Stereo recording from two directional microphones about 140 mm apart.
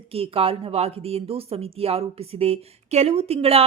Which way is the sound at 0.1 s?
45° right (ahead or behind).